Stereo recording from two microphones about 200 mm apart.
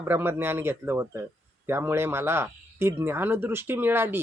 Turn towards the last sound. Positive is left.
turn(degrees=-10)  # may be behind; listen again after turning